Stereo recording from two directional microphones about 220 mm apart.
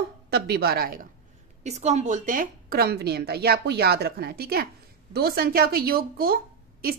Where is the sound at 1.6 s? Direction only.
30° right (ahead or behind).